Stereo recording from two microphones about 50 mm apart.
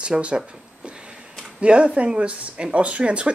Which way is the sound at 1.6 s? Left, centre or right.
Right.